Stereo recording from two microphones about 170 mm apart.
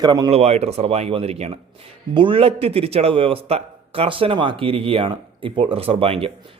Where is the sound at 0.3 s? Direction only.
40° right (ahead or behind).